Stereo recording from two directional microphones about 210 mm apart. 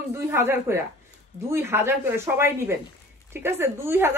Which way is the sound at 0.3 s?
10° right (ahead or behind).